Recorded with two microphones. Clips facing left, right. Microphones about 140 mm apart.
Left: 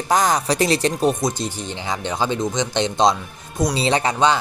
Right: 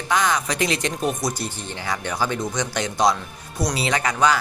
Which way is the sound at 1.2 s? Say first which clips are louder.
Left 3 dB; 20° left (ahead or behind).